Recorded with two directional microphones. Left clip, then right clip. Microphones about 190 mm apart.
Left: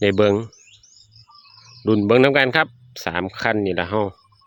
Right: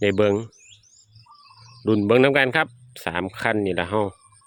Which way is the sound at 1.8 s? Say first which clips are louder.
Left 2 dB; 10° left (ahead or behind).